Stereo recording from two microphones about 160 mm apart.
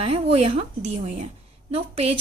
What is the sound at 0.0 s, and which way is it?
A woman's voice, 40° right (ahead or behind).